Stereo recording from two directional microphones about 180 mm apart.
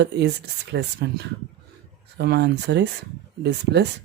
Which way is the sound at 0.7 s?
70° right (ahead or behind).